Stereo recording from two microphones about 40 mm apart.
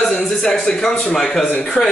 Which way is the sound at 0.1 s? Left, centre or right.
Centre.